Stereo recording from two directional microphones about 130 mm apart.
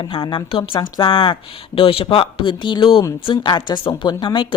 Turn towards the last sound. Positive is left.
turn(degrees=40)  # may be behind; listen again after turning